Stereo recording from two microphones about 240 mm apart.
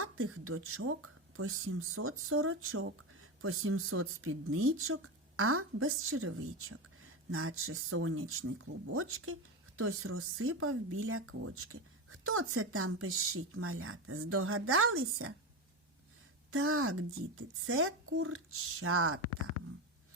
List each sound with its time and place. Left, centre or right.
0.0 s speech: right
16.5 s speech: right